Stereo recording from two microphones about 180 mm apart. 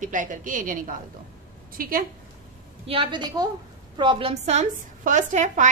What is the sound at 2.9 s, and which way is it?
A woman's voice, 25° right (ahead or behind).